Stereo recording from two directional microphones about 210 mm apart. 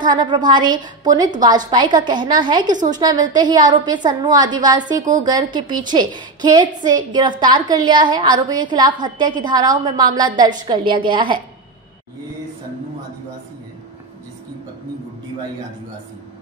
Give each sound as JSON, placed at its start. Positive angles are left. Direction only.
{"t": 0.0, "sound": "a woman's voice", "side_deg": -20}
{"t": 2.6, "sound": "a woman's voice", "side_deg": -35}
{"t": 2.9, "sound": "a woman's voice", "side_deg": -20}